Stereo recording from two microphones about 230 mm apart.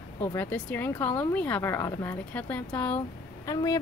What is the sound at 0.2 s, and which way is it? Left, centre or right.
Speech, centre.